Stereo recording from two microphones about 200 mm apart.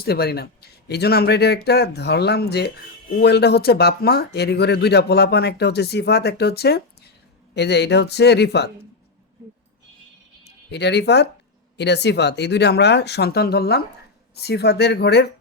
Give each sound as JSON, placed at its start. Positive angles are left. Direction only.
{"t": 0.0, "sound": "speech", "side_deg": 50}
{"t": 10.7, "sound": "speech", "side_deg": 55}